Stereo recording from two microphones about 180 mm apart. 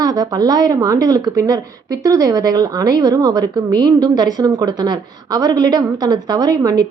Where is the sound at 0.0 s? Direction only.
20° right (ahead or behind).